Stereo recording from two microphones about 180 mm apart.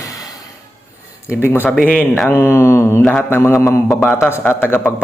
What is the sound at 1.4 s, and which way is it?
A man's voice, 10° left (ahead or behind).